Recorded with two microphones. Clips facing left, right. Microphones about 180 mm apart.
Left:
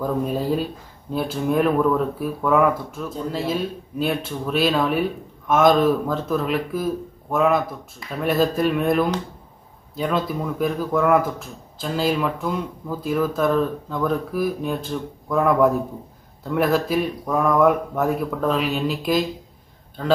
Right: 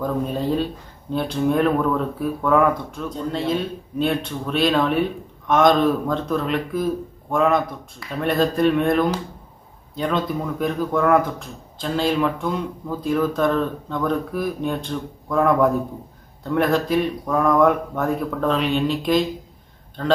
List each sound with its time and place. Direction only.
0.0 s a man's voice: 5° left (ahead or behind)